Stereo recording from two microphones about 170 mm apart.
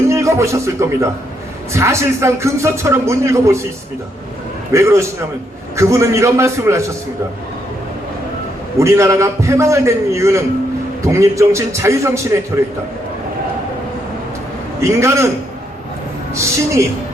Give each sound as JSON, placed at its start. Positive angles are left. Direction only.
{"t": 0.1, "sound": "music", "side_deg": -15}
{"t": 1.7, "sound": "speech", "side_deg": -15}
{"t": 4.7, "sound": "speech", "side_deg": -15}
{"t": 8.8, "sound": "speech", "side_deg": -15}
{"t": 14.8, "sound": "speech", "side_deg": -15}
{"t": 16.3, "sound": "speech", "side_deg": -15}